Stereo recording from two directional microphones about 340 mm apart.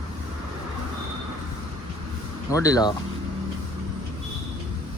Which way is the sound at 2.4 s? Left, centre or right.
Centre.